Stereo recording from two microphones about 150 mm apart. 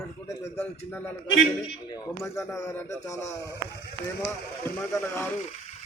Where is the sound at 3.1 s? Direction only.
20° left (ahead or behind).